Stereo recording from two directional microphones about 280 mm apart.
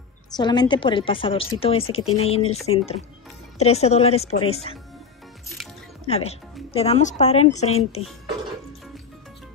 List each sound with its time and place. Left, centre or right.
0.4 s a woman's voice: centre
6.0 s a woman's voice: left